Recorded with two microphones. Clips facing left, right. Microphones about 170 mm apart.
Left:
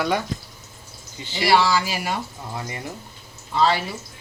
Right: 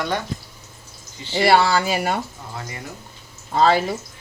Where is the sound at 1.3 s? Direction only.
55° right (ahead or behind).